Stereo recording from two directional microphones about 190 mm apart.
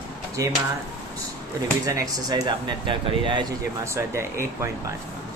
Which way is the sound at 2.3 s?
25° right (ahead or behind).